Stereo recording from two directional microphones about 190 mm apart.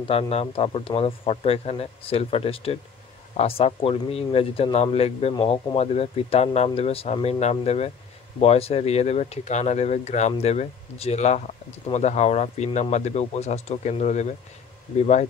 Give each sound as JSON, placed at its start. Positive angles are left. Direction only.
{"t": 0.1, "sound": "speech", "side_deg": 30}